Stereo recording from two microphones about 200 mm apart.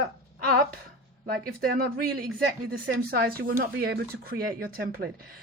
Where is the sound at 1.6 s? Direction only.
45° right (ahead or behind).